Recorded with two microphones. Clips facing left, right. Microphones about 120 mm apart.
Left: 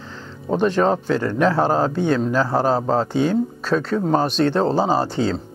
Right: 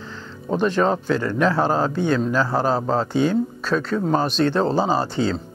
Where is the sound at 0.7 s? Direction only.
30° left (ahead or behind).